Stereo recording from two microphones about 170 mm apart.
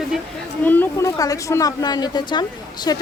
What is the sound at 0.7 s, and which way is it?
A woman's voice, 10° left (ahead or behind).